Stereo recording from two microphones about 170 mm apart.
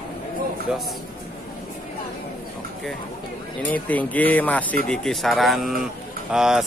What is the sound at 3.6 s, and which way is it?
Speech, 10° left (ahead or behind).